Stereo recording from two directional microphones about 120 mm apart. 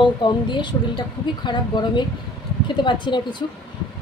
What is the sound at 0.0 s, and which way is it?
A woman's voice, 40° left (ahead or behind).